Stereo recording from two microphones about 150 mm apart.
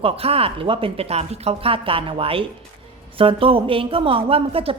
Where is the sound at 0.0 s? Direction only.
40° right (ahead or behind).